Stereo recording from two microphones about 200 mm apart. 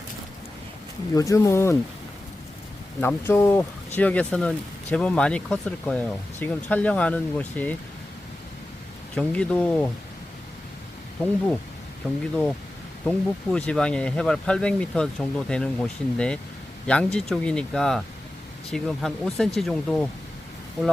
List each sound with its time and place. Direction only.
1.1 s speech: 15° left (ahead or behind)
3.0 s speech: 10° left (ahead or behind)
9.1 s speech: 5° left (ahead or behind)
12.0 s speech: 5° left (ahead or behind)